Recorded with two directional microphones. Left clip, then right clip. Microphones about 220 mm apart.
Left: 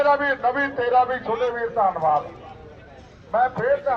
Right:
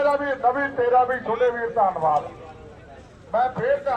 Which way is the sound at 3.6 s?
20° right (ahead or behind).